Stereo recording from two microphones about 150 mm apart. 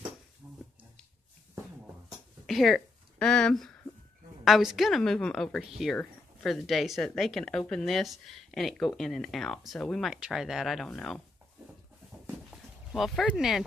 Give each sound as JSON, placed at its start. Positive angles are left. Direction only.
{"t": 2.4, "sound": "a sound", "side_deg": 0}
{"t": 4.5, "sound": "speech", "side_deg": 0}
{"t": 12.9, "sound": "speech", "side_deg": 0}